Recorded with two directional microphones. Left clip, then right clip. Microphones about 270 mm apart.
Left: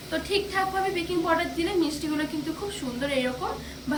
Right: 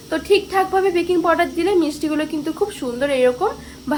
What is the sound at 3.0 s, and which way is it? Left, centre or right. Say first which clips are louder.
Speech: right 10 dB; centre.